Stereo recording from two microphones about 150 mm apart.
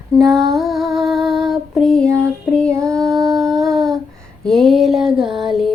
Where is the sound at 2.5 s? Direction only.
5° left (ahead or behind).